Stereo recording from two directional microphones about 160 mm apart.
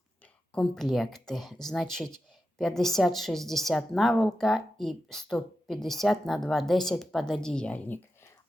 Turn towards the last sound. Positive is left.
turn(degrees=10)  # may be behind; listen again after turning